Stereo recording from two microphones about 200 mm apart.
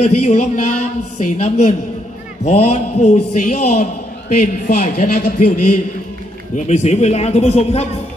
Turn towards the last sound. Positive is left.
turn(degrees=30)  # may be behind; listen again after turning